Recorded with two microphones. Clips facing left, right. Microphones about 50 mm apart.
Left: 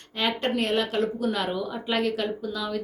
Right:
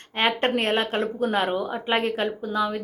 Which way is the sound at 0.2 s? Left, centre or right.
Right.